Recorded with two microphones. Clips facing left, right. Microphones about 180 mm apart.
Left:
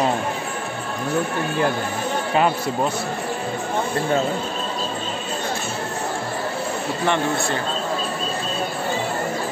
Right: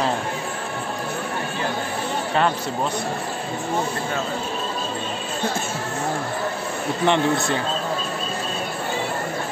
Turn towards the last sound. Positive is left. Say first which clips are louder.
# right 2 dB
turn(degrees=-20)  # may be behind; listen again after turning